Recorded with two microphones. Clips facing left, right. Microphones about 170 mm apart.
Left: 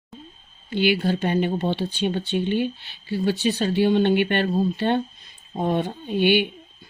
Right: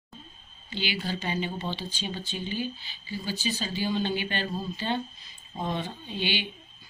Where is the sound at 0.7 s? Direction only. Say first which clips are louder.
Left 11 dB; 60° left (ahead or behind).